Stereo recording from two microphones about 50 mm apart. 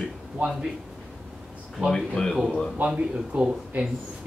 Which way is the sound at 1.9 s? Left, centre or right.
Centre.